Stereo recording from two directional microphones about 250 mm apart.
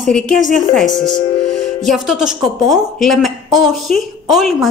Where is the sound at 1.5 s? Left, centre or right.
Left.